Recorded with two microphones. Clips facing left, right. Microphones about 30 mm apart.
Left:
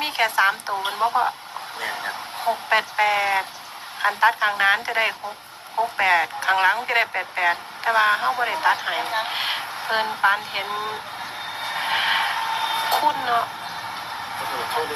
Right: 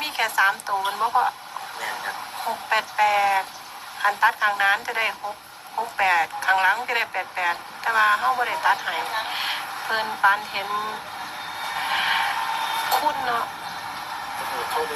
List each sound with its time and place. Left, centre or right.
0.0 s a woman's voice: left
4.4 s a woman's voice: left
4.6 s a woman's voice: left
6.8 s a woman's voice: left
7.1 s speech: centre
7.4 s a woman's voice: left
9.3 s a sound: left
10.3 s a woman's voice: centre
11.7 s a sound: left
14.3 s speech: left